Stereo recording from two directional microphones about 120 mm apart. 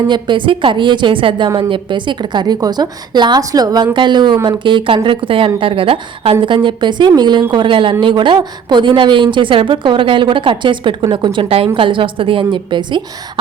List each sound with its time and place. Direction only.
0.1 s a woman's voice: 40° right (ahead or behind)